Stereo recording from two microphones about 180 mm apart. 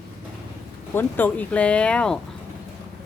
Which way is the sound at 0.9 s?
10° left (ahead or behind).